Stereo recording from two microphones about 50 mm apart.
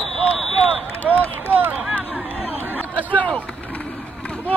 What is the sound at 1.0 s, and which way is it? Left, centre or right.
Run, left.